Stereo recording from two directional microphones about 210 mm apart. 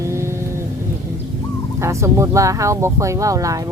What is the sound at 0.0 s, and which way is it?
Vehicle, 15° right (ahead or behind).